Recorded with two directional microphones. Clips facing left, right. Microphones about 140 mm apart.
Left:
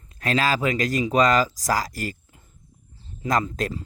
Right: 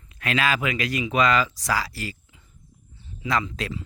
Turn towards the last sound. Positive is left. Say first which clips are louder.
# left 3 dB
turn(degrees=45)  # may be behind; listen again after turning